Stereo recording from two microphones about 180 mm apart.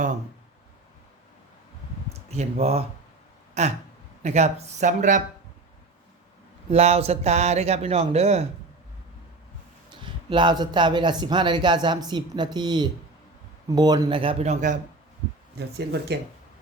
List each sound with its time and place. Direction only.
2.3 s speech: 35° right (ahead or behind)
6.7 s speech: 35° right (ahead or behind)
9.9 s speech: 25° right (ahead or behind)
15.5 s speech: 65° right (ahead or behind)